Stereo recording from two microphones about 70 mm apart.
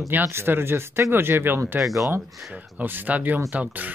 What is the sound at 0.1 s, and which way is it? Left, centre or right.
Speech, right.